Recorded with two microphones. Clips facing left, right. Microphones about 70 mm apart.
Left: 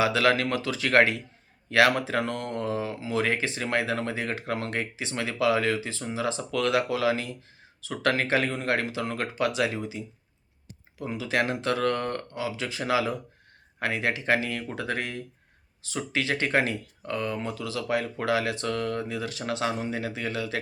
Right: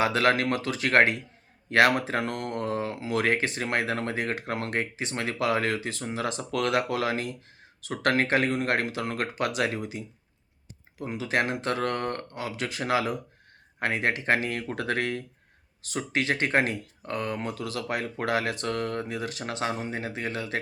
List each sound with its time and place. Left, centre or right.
0.0 s speech: right
11.0 s speech: right
15.9 s speech: right